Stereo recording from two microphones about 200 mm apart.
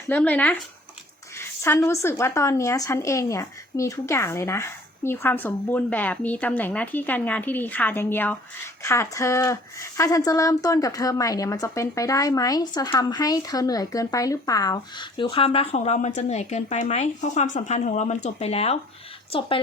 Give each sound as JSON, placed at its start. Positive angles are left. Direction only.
{"t": 0.1, "sound": "a woman's voice", "side_deg": 5}